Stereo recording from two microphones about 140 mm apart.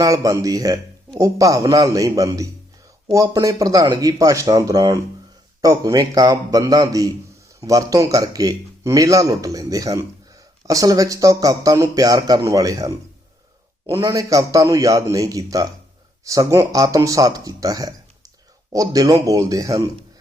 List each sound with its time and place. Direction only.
0.0 s a man's voice: 25° right (ahead or behind)